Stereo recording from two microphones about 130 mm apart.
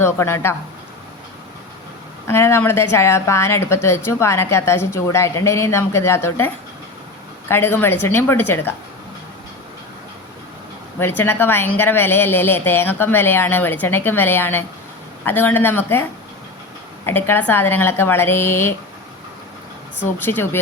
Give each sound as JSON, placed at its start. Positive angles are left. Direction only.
{"t": 0.0, "sound": "speech", "side_deg": 20}
{"t": 2.2, "sound": "speech", "side_deg": 20}
{"t": 11.0, "sound": "speech", "side_deg": 15}
{"t": 17.1, "sound": "speech", "side_deg": 15}
{"t": 20.0, "sound": "speech", "side_deg": 15}